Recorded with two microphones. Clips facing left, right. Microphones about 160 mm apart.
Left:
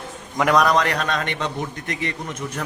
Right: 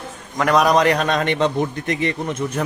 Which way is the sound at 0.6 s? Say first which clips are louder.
Right 4 dB; 20° right (ahead or behind).